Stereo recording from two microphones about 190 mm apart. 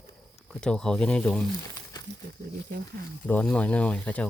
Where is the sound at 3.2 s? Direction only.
5° left (ahead or behind).